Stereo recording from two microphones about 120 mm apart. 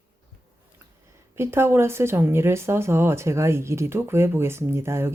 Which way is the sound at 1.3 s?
20° right (ahead or behind).